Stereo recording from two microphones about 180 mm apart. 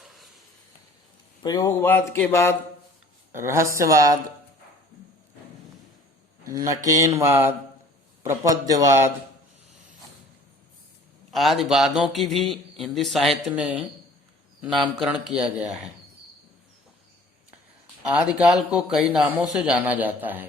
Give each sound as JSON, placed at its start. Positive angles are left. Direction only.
{"t": 0.0, "sound": "a sound", "side_deg": 0}
{"t": 1.4, "sound": "speech", "side_deg": 20}
{"t": 3.3, "sound": "a man's voice", "side_deg": -15}
{"t": 6.5, "sound": "a man's voice", "side_deg": -20}
{"t": 11.3, "sound": "speech", "side_deg": 0}
{"t": 18.1, "sound": "a man's voice", "side_deg": -5}